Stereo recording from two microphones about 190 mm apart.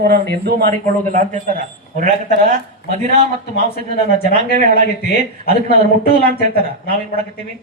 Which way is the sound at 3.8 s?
45° right (ahead or behind).